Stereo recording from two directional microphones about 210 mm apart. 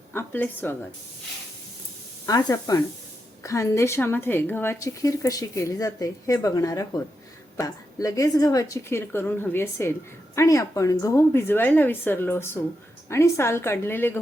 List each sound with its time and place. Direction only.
0.1 s a woman's voice: 10° left (ahead or behind)
2.2 s a woman's voice: 15° left (ahead or behind)